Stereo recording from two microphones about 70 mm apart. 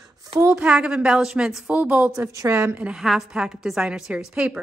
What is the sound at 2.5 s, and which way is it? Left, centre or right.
Speech, right.